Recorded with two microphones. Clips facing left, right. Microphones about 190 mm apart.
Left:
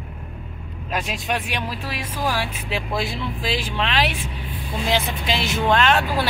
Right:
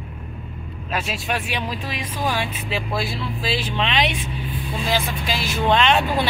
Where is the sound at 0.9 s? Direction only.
15° left (ahead or behind).